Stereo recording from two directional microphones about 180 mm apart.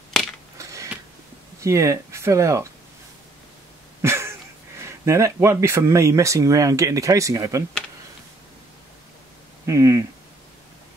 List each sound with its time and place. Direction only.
0.6 s a sound: 20° right (ahead or behind)
1.6 s speech: 15° right (ahead or behind)
4.0 s speech: 15° right (ahead or behind)
9.7 s speech: 15° right (ahead or behind)